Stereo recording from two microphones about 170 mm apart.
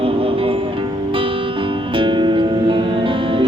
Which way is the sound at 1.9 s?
30° right (ahead or behind).